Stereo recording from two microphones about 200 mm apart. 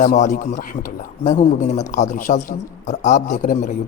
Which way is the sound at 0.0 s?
40° left (ahead or behind).